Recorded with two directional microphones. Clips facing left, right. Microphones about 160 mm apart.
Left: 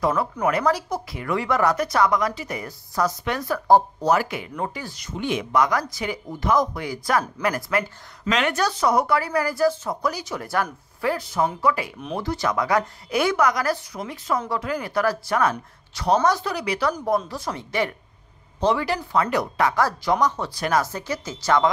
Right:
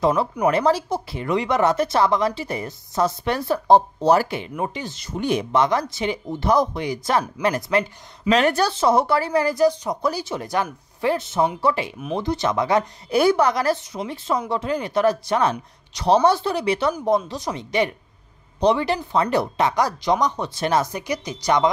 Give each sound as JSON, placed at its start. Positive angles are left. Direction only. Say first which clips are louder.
{"t": 0.0, "sound": "speech", "louder": "right 3 dB", "side_deg": -30}
{"t": 4.6, "sound": "speech", "louder": "right 1 dB", "side_deg": -20}
{"t": 5.1, "sound": "speech", "louder": "right 3 dB", "side_deg": -40}
{"t": 5.5, "sound": "a woman's voice", "louder": "left 1 dB", "side_deg": -25}